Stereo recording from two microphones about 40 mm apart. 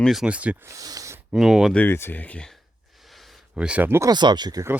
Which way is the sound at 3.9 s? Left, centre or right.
Right.